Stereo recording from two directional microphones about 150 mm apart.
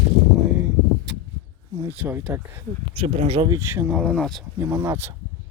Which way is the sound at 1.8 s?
10° right (ahead or behind).